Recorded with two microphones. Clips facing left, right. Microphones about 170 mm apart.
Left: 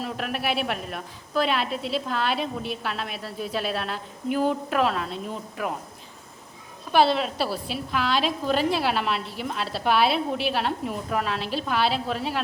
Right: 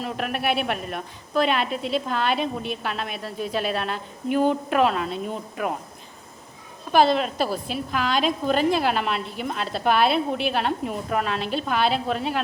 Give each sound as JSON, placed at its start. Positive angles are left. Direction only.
{"t": 0.0, "sound": "a woman's voice", "side_deg": 0}
{"t": 7.3, "sound": "a woman's voice", "side_deg": -45}
{"t": 7.9, "sound": "a woman's voice", "side_deg": 0}